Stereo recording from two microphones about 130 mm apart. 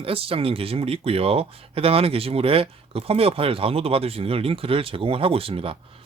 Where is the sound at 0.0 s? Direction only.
45° right (ahead or behind).